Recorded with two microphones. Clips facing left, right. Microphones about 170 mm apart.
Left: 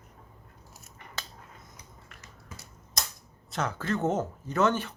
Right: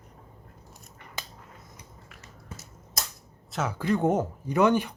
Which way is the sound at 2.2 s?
30° right (ahead or behind).